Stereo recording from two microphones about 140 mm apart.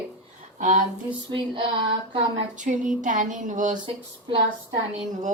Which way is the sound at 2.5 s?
60° right (ahead or behind).